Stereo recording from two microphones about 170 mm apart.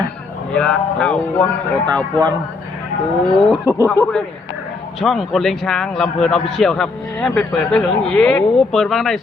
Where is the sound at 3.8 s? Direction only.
10° left (ahead or behind).